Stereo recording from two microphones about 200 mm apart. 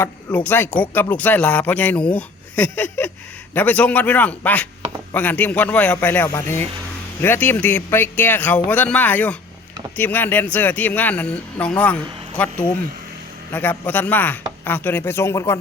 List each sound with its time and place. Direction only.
0.0 s speech: 10° left (ahead or behind)
13.5 s speech: 10° left (ahead or behind)